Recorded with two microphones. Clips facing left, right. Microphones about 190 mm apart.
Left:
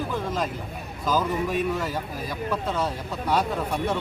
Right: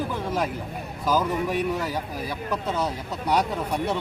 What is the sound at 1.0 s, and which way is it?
Speech, 10° right (ahead or behind).